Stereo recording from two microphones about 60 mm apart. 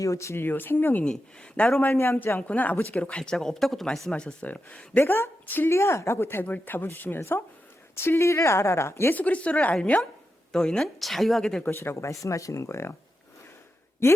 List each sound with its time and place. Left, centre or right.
0.0 s speech: left
0.4 s speech: left
1.0 s a woman's voice: centre
1.9 s speech: left; by 3.3 s centre
3.3 s speech: centre
4.1 s a woman's voice: centre
4.9 s speech: left
5.7 s speech: left
9.1 s a woman's voice: left; by 11.6 s centre
11.6 s speech: left
14.0 s speech: left